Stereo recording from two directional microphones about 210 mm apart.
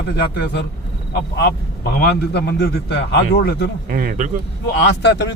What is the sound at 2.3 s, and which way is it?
Speech, 50° left (ahead or behind).